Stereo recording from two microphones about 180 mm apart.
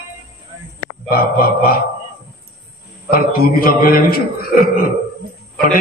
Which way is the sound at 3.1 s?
55° left (ahead or behind).